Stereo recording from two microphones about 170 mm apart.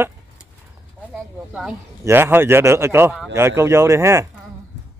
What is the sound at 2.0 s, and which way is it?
Speech, 15° right (ahead or behind).